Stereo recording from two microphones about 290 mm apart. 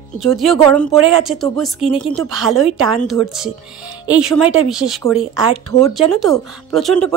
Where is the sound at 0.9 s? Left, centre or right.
Right.